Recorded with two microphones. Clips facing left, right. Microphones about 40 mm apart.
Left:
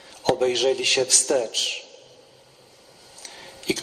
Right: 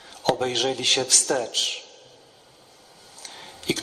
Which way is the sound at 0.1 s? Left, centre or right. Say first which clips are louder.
Left 2 dB; right.